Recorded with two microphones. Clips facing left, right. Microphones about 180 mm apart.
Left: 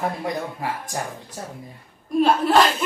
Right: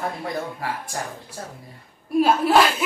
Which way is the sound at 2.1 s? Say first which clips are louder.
Even; 5° right (ahead or behind).